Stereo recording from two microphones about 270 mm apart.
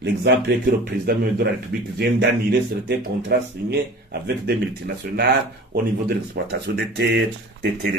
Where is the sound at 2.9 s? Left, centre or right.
Right.